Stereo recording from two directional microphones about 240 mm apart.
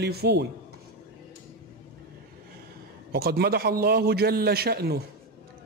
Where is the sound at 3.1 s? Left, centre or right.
Right.